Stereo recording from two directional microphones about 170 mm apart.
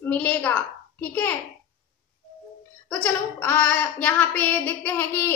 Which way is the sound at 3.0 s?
10° left (ahead or behind).